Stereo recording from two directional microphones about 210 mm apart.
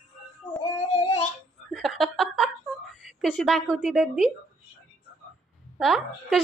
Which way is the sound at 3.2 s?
Centre (ahead or behind).